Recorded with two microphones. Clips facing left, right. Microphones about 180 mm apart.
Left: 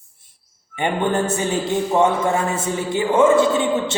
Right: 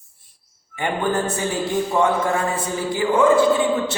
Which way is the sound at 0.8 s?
25° left (ahead or behind).